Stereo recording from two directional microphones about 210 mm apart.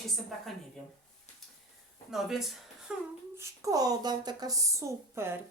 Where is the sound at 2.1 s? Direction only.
Centre (ahead or behind).